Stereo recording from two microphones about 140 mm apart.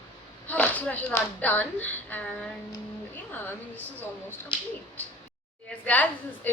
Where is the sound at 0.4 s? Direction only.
10° left (ahead or behind).